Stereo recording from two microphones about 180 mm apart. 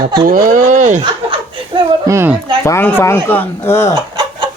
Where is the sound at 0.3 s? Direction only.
50° right (ahead or behind).